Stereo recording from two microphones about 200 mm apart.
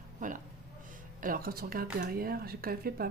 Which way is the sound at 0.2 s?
40° right (ahead or behind).